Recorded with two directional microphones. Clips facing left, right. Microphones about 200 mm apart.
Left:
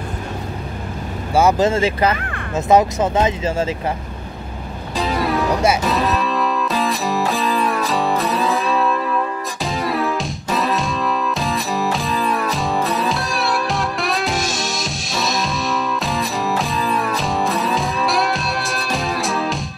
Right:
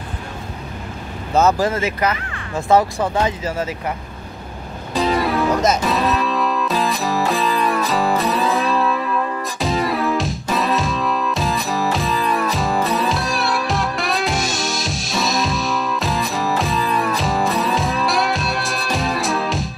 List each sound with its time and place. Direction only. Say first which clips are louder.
1.6 s speech: left 3 dB; 30° left (ahead or behind)
4.9 s music: right 2 dB; centre (ahead or behind)